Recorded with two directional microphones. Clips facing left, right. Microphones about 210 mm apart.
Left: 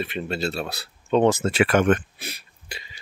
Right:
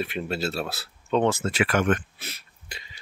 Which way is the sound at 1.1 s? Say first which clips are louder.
Left 4 dB; 20° left (ahead or behind).